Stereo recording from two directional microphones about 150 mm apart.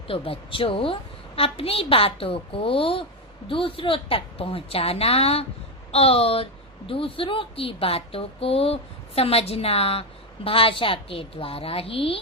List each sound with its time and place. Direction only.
0.1 s a woman's voice: 40° left (ahead or behind)